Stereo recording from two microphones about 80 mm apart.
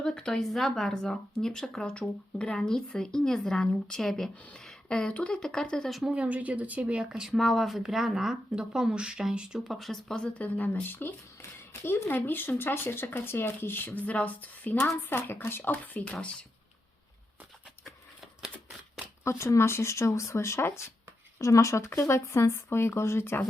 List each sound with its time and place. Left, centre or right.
0.0 s speech: centre
6.0 s speech: centre
7.3 s speech: centre
9.6 s speech: centre; by 16.1 s left
19.2 s speech: left